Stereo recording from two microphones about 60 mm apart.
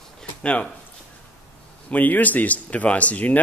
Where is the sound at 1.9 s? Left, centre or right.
Left.